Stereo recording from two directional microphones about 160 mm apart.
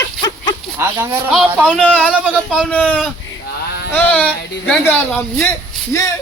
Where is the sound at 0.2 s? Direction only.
25° left (ahead or behind).